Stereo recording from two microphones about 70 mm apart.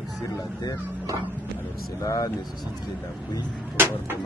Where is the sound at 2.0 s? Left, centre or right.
Left.